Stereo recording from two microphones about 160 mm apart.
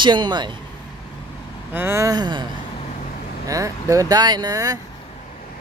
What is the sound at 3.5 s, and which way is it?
Speech, 20° right (ahead or behind).